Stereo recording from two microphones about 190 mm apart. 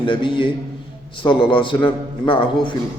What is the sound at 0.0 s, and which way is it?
A man's voice, 25° left (ahead or behind).